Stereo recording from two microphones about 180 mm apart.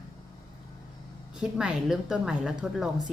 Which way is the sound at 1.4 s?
5° right (ahead or behind).